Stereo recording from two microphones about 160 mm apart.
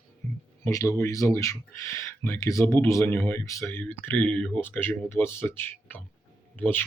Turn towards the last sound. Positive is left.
turn(degrees=10)  # may be behind; listen again after turning